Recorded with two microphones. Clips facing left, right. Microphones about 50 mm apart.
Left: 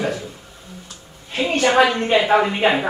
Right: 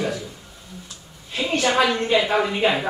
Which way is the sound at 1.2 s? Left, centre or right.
Left.